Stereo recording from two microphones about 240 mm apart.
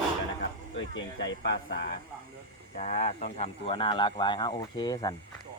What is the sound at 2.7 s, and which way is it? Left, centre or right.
Speech, left.